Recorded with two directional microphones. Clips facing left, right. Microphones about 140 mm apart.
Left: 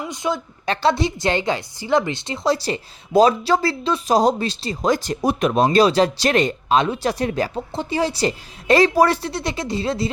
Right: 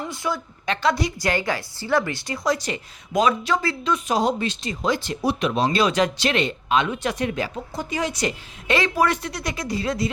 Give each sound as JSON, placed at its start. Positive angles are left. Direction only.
{"t": 0.1, "sound": "a woman's voice", "side_deg": 20}
{"t": 0.6, "sound": "a woman's voice", "side_deg": 30}
{"t": 5.7, "sound": "a woman's voice", "side_deg": 35}